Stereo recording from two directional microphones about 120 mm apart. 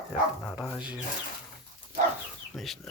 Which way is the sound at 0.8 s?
10° right (ahead or behind).